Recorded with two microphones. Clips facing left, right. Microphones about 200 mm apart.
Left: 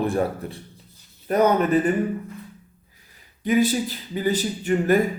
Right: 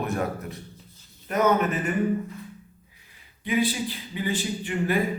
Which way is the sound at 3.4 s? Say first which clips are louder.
Left 5 dB; 45° left (ahead or behind).